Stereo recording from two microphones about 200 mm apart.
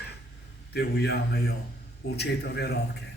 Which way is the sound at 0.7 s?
55° left (ahead or behind).